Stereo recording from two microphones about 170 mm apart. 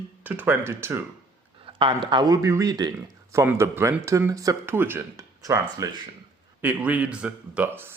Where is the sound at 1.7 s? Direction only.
30° right (ahead or behind).